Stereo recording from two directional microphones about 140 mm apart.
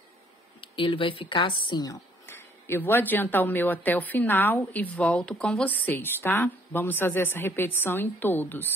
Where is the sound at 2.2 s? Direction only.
15° left (ahead or behind).